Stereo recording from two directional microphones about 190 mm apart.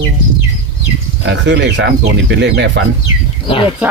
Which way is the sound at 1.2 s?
65° right (ahead or behind).